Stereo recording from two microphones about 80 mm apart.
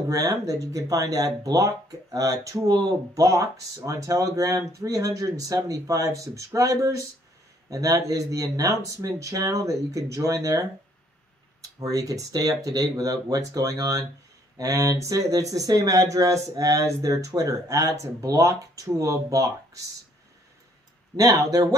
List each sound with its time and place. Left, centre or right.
0.1 s speech: right
11.8 s speech: right
21.2 s speech: right